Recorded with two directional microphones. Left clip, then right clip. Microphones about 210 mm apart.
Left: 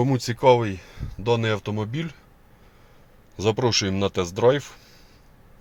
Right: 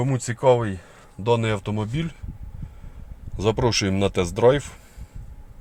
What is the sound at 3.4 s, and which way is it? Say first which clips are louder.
Speech: even; 5° right (ahead or behind).